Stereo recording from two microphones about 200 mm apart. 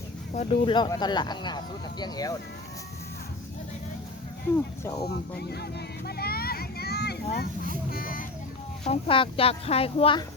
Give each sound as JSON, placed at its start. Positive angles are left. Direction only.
{"t": 0.3, "sound": "speech", "side_deg": 25}
{"t": 4.5, "sound": "speech", "side_deg": 15}
{"t": 5.0, "sound": "speech", "side_deg": 55}
{"t": 6.1, "sound": "a sound", "side_deg": 50}
{"t": 7.9, "sound": "speech", "side_deg": 45}
{"t": 8.8, "sound": "speech", "side_deg": 30}